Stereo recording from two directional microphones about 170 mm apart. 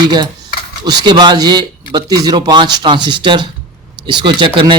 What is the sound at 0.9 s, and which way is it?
A man's voice, 25° right (ahead or behind).